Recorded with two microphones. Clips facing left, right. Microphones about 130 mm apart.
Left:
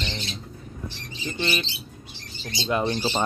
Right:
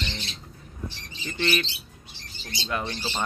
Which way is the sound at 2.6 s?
20° left (ahead or behind).